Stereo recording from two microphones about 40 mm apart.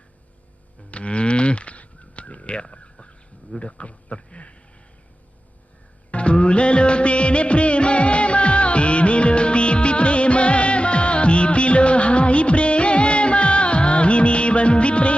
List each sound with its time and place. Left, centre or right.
0.9 s a sound: left
3.6 s a man's voice: left
6.1 s music of bollywood: left